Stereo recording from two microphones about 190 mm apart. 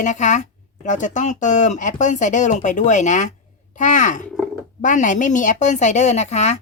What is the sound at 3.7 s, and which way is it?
Grunt, 40° left (ahead or behind).